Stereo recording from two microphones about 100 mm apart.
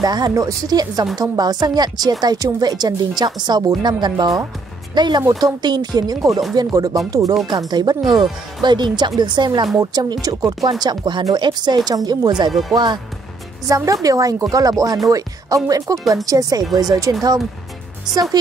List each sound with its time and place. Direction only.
0.0 s a woman's voice: 40° right (ahead or behind)
10.8 s a woman's voice: 45° right (ahead or behind)
13.7 s speech: 35° right (ahead or behind)